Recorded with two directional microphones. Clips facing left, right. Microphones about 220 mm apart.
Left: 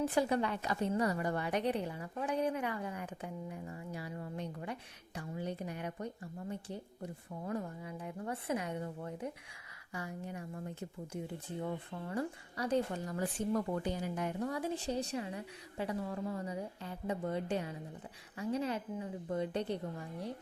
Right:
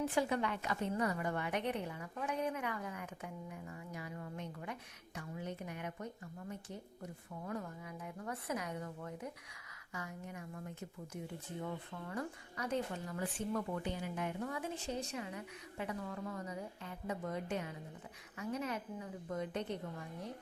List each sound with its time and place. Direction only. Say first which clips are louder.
0.1 s a woman's voice: left 3 dB; 35° left (ahead or behind)
11.6 s speech: left 4 dB; 30° left (ahead or behind)